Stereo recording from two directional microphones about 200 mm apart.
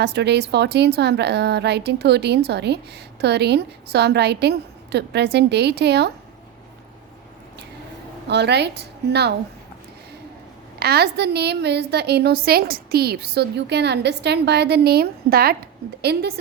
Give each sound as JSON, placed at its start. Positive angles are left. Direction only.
{"t": 0.0, "sound": "a woman's voice", "side_deg": -55}
{"t": 8.3, "sound": "a woman's voice", "side_deg": -55}
{"t": 10.8, "sound": "a woman's voice", "side_deg": -55}